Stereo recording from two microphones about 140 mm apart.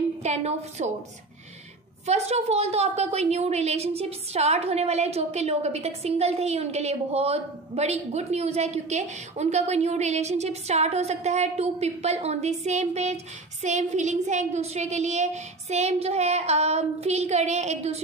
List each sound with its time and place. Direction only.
0.2 s a woman's voice: 50° right (ahead or behind)
2.0 s a woman's voice: 50° right (ahead or behind)